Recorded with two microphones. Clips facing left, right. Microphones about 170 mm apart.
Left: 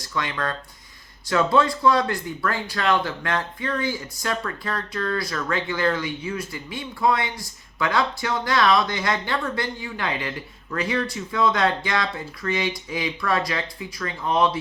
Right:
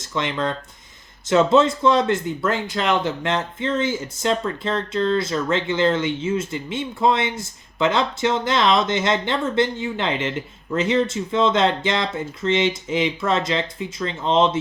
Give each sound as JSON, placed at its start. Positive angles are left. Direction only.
{"t": 0.0, "sound": "speech", "side_deg": -20}